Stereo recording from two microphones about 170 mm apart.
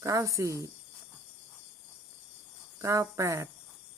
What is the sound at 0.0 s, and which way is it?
Speech, 20° right (ahead or behind).